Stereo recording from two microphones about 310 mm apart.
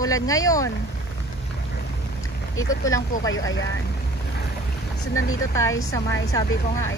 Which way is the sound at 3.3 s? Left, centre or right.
Left.